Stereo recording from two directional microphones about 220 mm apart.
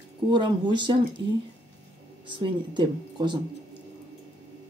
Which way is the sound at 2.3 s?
20° right (ahead or behind).